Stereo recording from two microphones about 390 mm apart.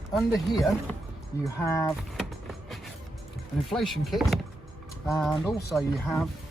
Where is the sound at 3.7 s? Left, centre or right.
Centre.